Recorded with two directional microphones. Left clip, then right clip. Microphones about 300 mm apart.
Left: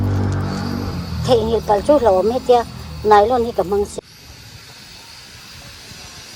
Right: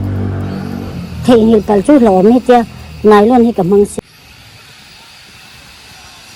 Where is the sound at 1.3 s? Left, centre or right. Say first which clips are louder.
Right 6 dB; right.